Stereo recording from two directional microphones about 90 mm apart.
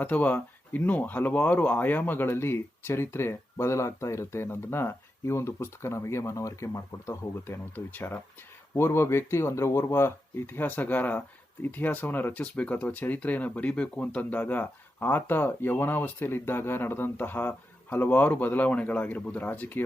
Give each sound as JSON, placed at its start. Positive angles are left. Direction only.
{"t": 0.0, "sound": "speech", "side_deg": 20}